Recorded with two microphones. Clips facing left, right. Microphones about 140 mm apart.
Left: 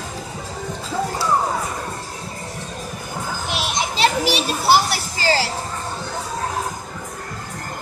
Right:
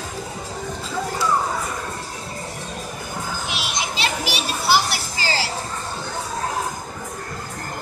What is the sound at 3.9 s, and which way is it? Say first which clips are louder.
Children playing: left 9 dB; 45° left (ahead or behind).